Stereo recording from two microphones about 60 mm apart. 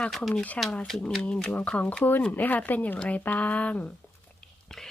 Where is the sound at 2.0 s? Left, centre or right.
Left.